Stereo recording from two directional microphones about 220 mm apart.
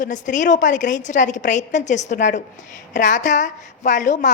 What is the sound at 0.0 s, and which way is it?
A woman's voice, 35° left (ahead or behind).